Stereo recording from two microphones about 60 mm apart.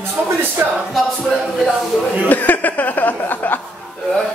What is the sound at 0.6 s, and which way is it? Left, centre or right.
Music, right.